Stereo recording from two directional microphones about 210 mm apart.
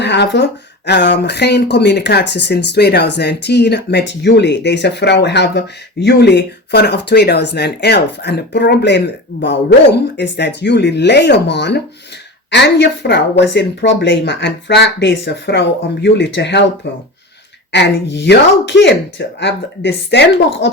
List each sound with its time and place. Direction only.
0.0 s speech: 55° left (ahead or behind)
17.7 s speech: 55° left (ahead or behind)